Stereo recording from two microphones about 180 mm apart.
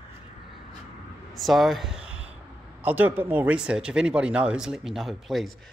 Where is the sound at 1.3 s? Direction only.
Centre (ahead or behind).